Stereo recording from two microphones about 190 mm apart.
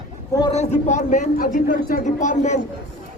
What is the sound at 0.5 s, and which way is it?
A man's voice, 40° left (ahead or behind).